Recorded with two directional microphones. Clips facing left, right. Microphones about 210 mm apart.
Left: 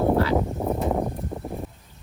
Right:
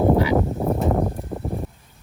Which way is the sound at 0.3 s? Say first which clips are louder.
Right 3 dB; centre (ahead or behind).